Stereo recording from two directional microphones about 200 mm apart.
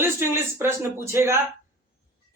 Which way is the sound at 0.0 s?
10° right (ahead or behind).